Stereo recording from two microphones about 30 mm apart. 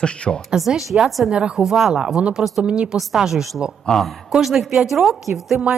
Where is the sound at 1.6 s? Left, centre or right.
Centre.